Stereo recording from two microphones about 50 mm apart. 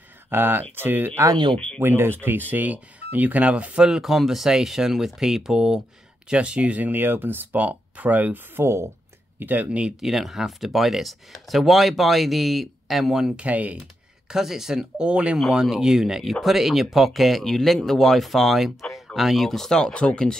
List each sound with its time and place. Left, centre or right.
0.3 s speech: right
2.5 s speech: right
3.8 s speech: centre; by 8.4 s right
8.5 s speech: right
9.4 s speech: right
9.7 s speech: centre
9.9 s speech: centre
13.4 s speech: right
14.3 s speech: centre
15.0 s speech: right
15.6 s speech: centre